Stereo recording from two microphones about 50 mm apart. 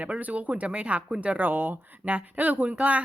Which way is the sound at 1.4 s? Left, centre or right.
Right.